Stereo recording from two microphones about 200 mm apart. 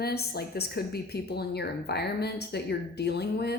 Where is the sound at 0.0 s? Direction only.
50° left (ahead or behind).